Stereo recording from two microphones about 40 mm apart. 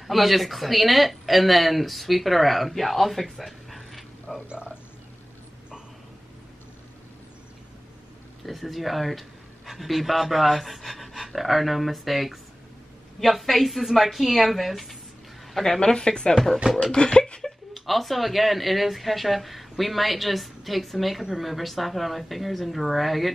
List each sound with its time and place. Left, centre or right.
0.0 s speech: centre
8.5 s speech: centre
15.5 s a woman's voice: centre
15.8 s a sound: left
17.4 s speech: centre